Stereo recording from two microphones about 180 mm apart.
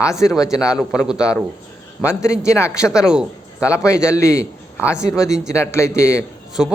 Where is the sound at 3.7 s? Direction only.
15° left (ahead or behind).